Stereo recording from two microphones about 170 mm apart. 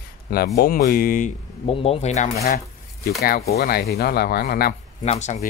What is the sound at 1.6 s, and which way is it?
Speech, 35° left (ahead or behind).